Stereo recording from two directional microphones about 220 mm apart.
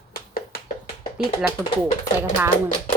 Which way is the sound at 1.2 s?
Centre (ahead or behind).